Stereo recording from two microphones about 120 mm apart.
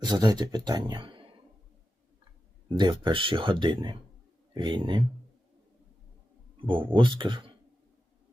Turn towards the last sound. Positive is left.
turn(degrees=-40)  # may be behind; listen again after turning